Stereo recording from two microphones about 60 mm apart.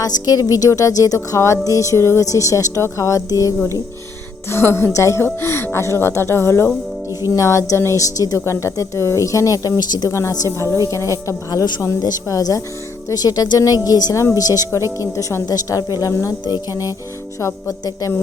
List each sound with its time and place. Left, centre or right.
0.0 s speech: left
4.4 s speech: left
4.9 s speech: left
7.3 s speech: left
10.1 s speech: left
13.1 s a woman's voice: left
14.3 s a woman's voice: left
14.9 s speech: left
15.4 s a woman's voice: left